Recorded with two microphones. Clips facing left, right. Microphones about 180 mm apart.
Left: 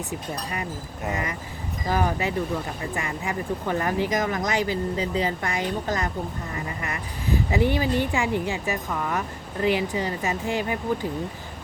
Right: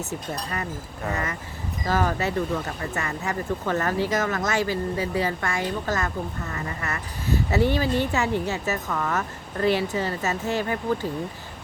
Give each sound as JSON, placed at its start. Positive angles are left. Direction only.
{"t": 0.0, "sound": "speech", "side_deg": 15}